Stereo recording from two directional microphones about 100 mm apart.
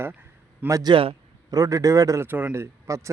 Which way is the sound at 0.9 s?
70° right (ahead or behind).